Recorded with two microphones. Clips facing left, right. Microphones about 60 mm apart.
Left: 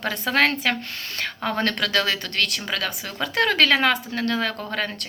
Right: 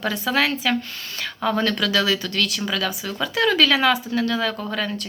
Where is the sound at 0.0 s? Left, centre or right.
Left.